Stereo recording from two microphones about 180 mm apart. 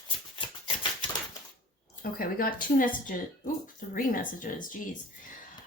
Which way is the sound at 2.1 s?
50° left (ahead or behind).